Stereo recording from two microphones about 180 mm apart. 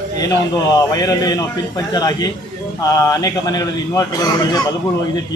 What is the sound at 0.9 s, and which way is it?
A man's voice, 20° left (ahead or behind).